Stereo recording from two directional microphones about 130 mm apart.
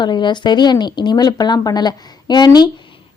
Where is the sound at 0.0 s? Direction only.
35° left (ahead or behind).